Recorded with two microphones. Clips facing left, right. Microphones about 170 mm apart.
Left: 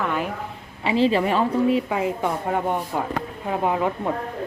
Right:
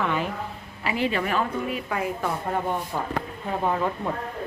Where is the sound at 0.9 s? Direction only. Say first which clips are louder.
Left 6 dB; 30° left (ahead or behind).